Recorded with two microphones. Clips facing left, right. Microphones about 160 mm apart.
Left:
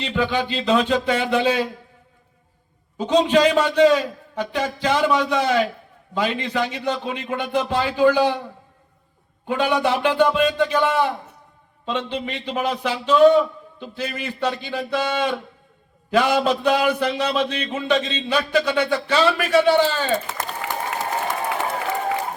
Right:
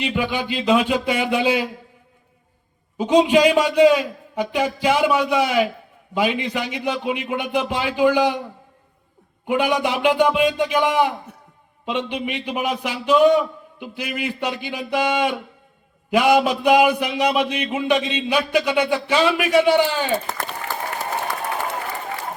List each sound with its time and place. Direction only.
0.0 s a man's voice: 10° right (ahead or behind)
3.0 s a man's voice: 10° right (ahead or behind)
9.5 s a man's voice: 15° right (ahead or behind)
20.6 s applause: 90° left